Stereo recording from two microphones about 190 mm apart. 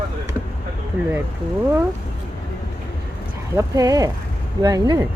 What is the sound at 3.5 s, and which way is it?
Speech, 20° right (ahead or behind).